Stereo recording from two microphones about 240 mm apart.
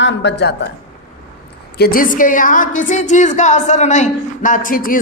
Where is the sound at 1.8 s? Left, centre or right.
Left.